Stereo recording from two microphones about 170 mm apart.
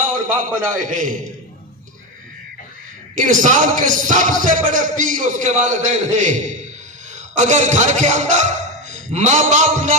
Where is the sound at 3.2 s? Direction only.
50° right (ahead or behind).